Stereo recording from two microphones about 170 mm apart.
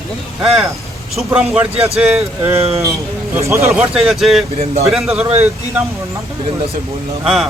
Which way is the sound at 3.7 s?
5° right (ahead or behind).